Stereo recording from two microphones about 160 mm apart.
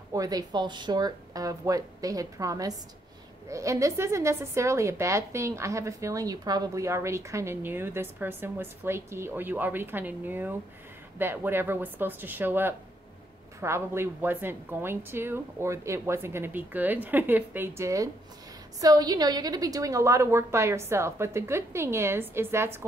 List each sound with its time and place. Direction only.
0.1 s a woman's voice: 20° right (ahead or behind)